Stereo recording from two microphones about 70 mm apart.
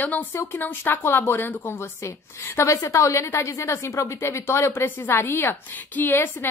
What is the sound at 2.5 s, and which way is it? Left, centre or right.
A woman's voice, left.